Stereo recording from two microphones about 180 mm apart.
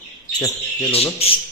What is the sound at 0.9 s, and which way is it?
Speech, 35° left (ahead or behind).